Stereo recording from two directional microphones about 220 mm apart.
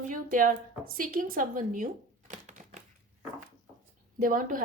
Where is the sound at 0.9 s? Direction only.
40° right (ahead or behind).